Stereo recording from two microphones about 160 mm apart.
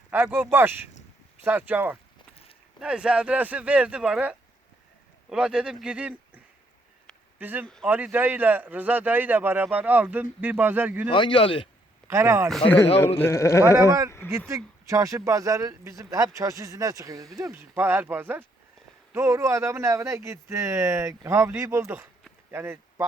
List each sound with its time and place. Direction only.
0.1 s speech: 10° right (ahead or behind)
1.5 s a man's voice: 10° right (ahead or behind)
11.1 s speech: 30° left (ahead or behind)
12.0 s speech: 15° right (ahead or behind)
12.5 s speech: 5° left (ahead or behind)
13.7 s speech: 20° right (ahead or behind)